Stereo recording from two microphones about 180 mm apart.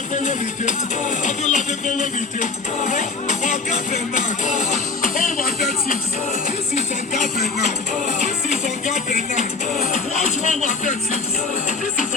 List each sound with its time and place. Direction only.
0.1 s music: 40° left (ahead or behind)
9.0 s music: 45° left (ahead or behind)